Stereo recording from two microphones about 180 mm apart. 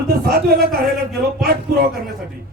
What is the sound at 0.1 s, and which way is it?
Speech, 60° right (ahead or behind).